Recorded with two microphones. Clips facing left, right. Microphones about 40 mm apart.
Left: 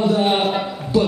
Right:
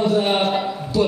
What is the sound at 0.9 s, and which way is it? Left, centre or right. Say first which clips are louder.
Music: left 2 dB; left.